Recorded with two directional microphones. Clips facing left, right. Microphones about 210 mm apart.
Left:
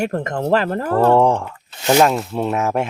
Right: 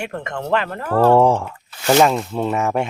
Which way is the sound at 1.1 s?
5° right (ahead or behind).